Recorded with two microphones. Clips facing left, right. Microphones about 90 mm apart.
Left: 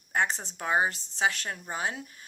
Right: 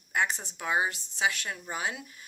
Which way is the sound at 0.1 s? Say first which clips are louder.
Left 1 dB; 35° left (ahead or behind).